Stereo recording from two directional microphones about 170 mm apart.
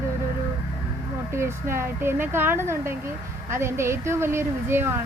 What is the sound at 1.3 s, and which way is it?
Speech, 15° right (ahead or behind).